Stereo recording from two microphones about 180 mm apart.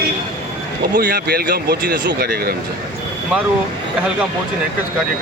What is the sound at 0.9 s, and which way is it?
Speech, 55° right (ahead or behind).